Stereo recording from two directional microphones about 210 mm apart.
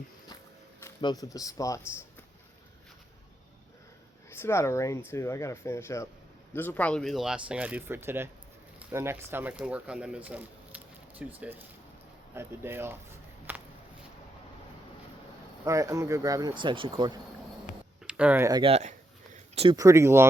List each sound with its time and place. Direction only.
0.8 s speech: 15° left (ahead or behind)
4.3 s speech: 10° left (ahead or behind); by 13.0 s 10° right (ahead or behind)
13.5 s a sound: 10° right (ahead or behind)
15.6 s speech: 15° right (ahead or behind)
18.0 s speech: 5° right (ahead or behind)
18.6 s speech: 30° right (ahead or behind)
19.5 s speech: 20° right (ahead or behind)